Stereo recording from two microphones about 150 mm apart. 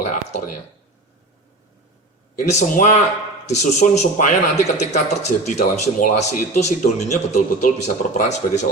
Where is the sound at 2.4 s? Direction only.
50° left (ahead or behind).